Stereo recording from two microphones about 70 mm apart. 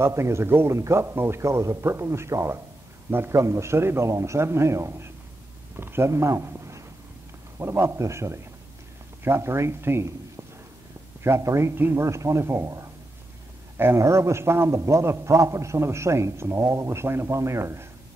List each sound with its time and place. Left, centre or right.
0.0 s a man's voice: right
3.1 s a man's voice: right
3.3 s a man's voice: right